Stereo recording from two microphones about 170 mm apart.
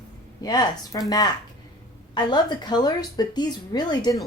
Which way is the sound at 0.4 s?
25° left (ahead or behind).